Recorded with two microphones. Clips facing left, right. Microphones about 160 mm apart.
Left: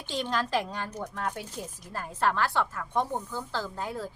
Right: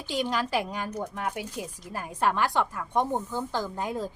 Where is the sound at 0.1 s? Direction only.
10° right (ahead or behind).